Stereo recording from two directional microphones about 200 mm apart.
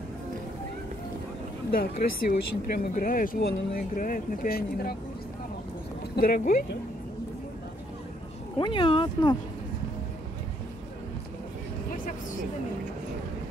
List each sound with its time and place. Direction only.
1.7 s speech: 50° left (ahead or behind)
6.1 s speech: 45° left (ahead or behind)
8.5 s speech: 25° left (ahead or behind)